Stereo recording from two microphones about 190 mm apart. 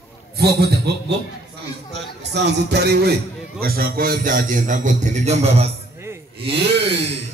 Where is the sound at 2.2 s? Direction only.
65° right (ahead or behind).